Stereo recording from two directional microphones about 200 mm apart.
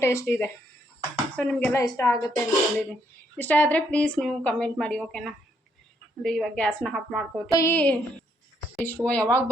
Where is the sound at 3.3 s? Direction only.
10° left (ahead or behind).